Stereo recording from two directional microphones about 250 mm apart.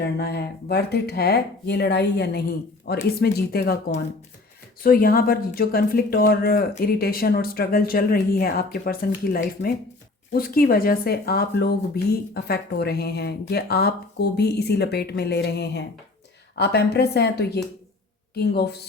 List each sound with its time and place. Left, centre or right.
0.0 s speech: left